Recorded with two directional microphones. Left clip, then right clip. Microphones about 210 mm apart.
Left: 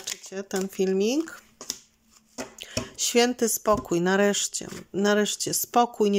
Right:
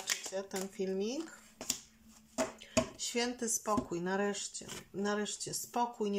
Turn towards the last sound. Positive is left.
turn(degrees=45)  # may be behind; listen again after turning